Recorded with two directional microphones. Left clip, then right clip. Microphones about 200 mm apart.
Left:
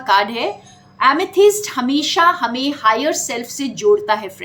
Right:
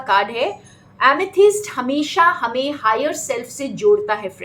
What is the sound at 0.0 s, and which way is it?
A woman's voice, 50° left (ahead or behind).